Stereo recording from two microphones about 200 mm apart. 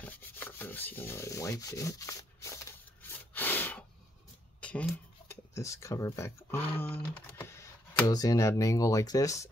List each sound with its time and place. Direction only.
0.0 s rub: 10° left (ahead or behind)
4.6 s speech: 5° left (ahead or behind)
7.2 s computer keyboard: 10° left (ahead or behind)
8.1 s speech: 20° left (ahead or behind)